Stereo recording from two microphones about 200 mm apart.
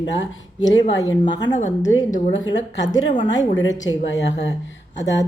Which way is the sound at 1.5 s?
40° left (ahead or behind).